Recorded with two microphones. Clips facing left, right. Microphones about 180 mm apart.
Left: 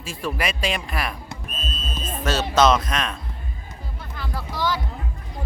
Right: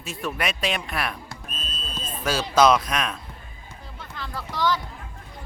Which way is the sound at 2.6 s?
10° right (ahead or behind).